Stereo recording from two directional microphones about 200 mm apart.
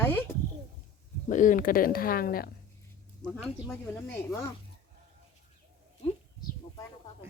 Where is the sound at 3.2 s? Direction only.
20° left (ahead or behind).